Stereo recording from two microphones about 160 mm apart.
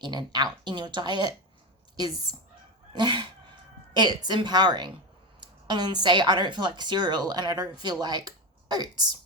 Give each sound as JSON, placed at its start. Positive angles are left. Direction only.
{"t": 0.0, "sound": "speech", "side_deg": -25}